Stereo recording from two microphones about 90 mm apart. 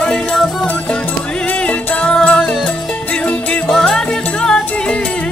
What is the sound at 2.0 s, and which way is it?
Music, 10° left (ahead or behind).